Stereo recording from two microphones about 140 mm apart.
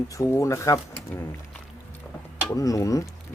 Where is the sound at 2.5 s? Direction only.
25° left (ahead or behind).